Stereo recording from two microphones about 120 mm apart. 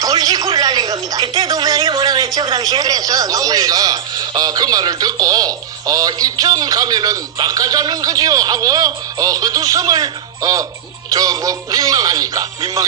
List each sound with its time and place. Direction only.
0.0 s speech: 30° right (ahead or behind)
11.1 s music: 30° right (ahead or behind)